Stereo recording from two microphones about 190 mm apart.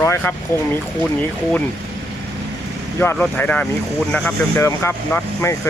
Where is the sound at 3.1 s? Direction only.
5° left (ahead or behind).